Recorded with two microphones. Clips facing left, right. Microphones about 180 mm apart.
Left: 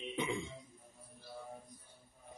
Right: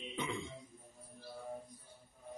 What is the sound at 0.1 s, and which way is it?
Music, 10° left (ahead or behind).